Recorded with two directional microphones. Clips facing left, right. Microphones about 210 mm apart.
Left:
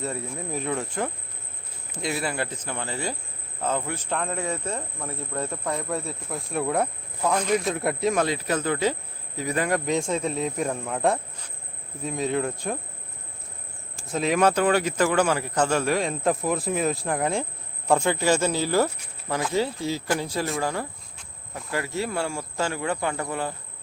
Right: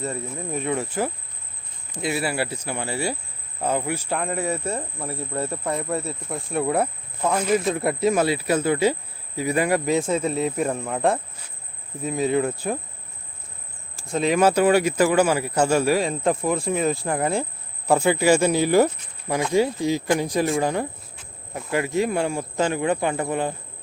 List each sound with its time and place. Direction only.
0.0 s speech: centre (ahead or behind)
14.1 s speech: centre (ahead or behind); by 23.6 s 20° right (ahead or behind)